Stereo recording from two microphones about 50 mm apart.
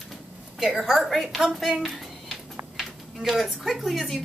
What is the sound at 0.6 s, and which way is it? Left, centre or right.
A woman's voice, centre.